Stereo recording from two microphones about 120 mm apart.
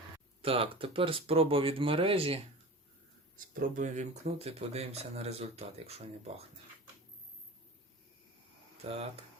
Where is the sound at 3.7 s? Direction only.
85° right; by 6.0 s 60° right (ahead or behind).